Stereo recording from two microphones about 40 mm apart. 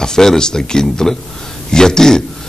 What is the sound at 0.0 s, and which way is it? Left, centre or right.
A man's voice, centre.